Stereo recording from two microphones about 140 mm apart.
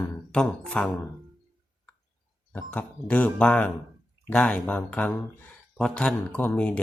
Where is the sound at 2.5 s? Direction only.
10° left (ahead or behind).